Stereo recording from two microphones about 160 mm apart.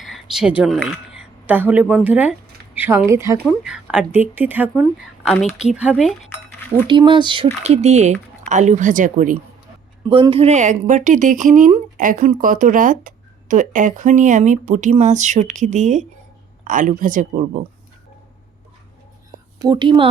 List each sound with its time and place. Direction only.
0.0 s a woman's voice: centre (ahead or behind); by 3.4 s 20° right (ahead or behind)
3.4 s speech: 5° right (ahead or behind)
4.7 s a woman's voice: 5° left (ahead or behind)
5.9 s cutlery: centre (ahead or behind)
6.8 s speech: 30° right (ahead or behind)
7.6 s speech: 40° right (ahead or behind)
10.1 s speech: 30° right (ahead or behind); by 17.2 s 55° right (ahead or behind)
19.5 s speech: 25° right (ahead or behind)